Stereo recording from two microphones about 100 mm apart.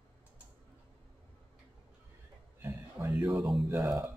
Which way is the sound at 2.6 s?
30° right (ahead or behind).